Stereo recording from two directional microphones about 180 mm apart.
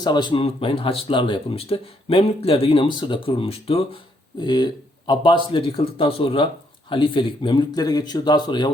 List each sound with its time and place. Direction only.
0.0 s speech: 25° left (ahead or behind)